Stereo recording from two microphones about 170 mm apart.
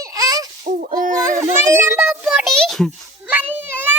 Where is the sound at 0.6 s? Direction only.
55° right (ahead or behind).